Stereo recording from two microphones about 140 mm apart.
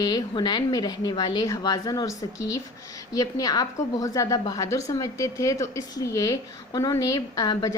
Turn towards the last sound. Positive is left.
turn(degrees=25)  # may be behind; listen again after turning